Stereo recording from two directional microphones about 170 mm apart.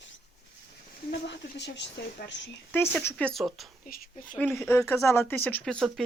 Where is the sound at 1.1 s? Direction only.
90° left.